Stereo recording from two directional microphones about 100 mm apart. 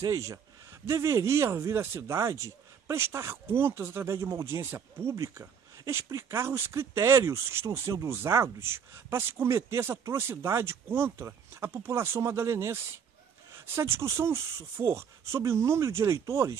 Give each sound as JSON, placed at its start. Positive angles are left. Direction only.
{"t": 0.0, "sound": "speech", "side_deg": -35}